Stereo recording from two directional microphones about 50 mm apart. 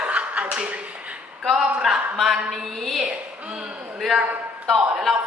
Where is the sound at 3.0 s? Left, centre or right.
Centre.